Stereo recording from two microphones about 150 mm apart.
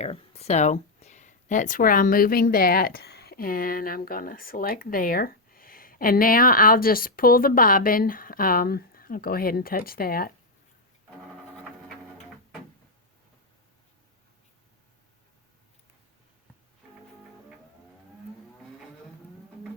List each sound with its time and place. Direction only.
0.0 s speech: 45° left (ahead or behind); by 10.3 s 80° left
12.0 s printer: 5° left (ahead or behind)